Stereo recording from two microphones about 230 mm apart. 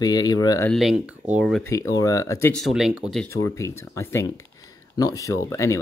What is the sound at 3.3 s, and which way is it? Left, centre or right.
Speech, centre.